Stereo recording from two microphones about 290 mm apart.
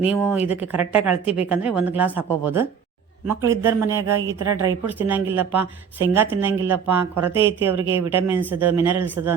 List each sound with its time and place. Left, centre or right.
0.0 s speech: centre